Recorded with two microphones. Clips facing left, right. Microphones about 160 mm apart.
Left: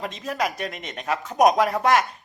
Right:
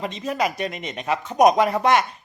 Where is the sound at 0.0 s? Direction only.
Centre (ahead or behind).